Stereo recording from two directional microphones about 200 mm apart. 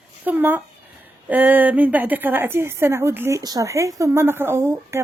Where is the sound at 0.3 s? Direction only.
10° right (ahead or behind).